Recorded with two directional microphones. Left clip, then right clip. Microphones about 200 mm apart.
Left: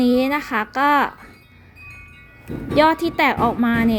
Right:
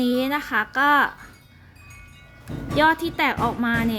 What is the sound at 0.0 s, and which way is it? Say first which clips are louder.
A woman's voice: left 5 dB; 15° left (ahead or behind).